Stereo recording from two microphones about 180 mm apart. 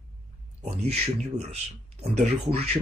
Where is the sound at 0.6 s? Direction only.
35° right (ahead or behind).